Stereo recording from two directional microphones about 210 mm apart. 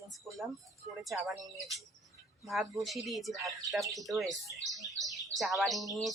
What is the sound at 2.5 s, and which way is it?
Speech, centre (ahead or behind).